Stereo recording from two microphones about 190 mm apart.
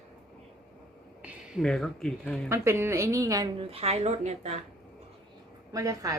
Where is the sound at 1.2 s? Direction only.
Centre (ahead or behind).